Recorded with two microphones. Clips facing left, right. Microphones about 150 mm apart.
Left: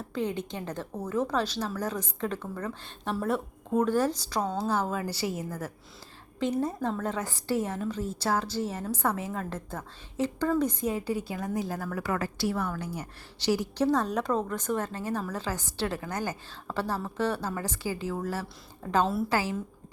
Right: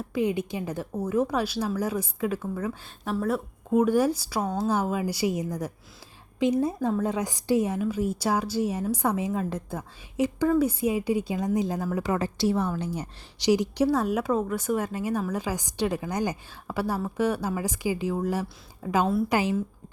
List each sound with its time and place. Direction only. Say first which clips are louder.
0.1 s a woman's voice: right 5 dB; 10° right (ahead or behind)
19.3 s speech: right 4 dB; 20° right (ahead or behind)